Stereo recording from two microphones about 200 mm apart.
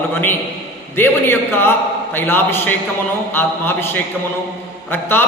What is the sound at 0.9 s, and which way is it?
A man's voice, 10° left (ahead or behind).